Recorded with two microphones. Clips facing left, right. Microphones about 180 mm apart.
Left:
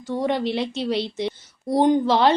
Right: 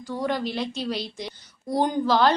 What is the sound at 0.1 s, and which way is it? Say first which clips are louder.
A woman's voice: left 4 dB; 25° left (ahead or behind).